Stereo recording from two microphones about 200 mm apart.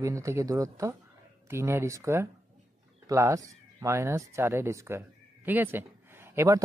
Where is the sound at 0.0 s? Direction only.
15° right (ahead or behind).